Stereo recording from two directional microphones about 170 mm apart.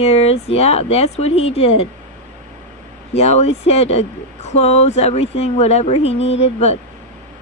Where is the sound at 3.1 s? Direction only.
40° left (ahead or behind).